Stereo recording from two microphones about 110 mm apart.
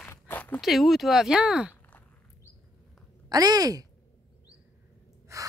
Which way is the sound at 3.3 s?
35° right (ahead or behind).